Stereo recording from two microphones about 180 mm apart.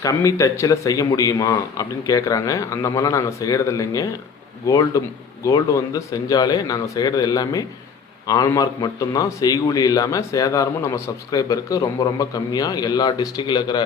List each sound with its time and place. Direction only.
0.0 s a man's voice: 20° left (ahead or behind)